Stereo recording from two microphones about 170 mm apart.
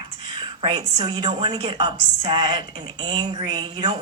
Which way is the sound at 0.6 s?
25° right (ahead or behind).